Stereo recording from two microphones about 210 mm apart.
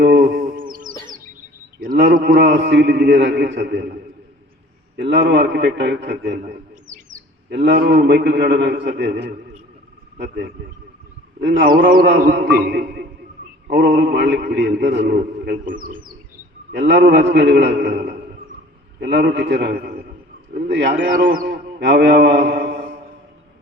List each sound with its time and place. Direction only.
0.0 s a sound: 50° right (ahead or behind)
0.7 s music: 40° right (ahead or behind)
1.8 s a man's voice: 45° right (ahead or behind)
4.9 s a man's voice: 55° right (ahead or behind)
7.5 s a man's voice: 50° right (ahead or behind)
16.7 s a man's voice: 55° right (ahead or behind)
21.1 s mantra: 40° right (ahead or behind)